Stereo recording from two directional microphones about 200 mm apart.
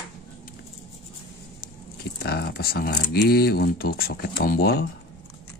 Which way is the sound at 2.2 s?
55° left (ahead or behind).